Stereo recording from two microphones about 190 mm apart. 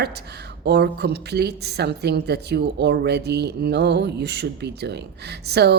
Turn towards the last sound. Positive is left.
turn(degrees=-60)  # may be behind; listen again after turning